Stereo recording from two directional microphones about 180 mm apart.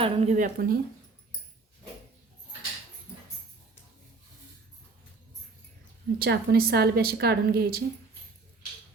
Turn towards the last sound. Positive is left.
turn(degrees=-60)  # may be behind; listen again after turning